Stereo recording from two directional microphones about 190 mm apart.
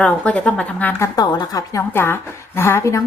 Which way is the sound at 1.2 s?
20° left (ahead or behind).